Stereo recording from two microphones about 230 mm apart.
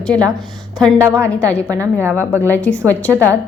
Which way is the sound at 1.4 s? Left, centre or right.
Centre.